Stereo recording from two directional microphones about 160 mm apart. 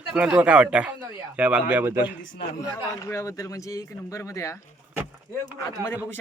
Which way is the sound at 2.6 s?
20° left (ahead or behind).